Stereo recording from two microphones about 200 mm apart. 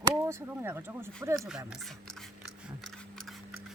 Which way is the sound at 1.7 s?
Centre (ahead or behind).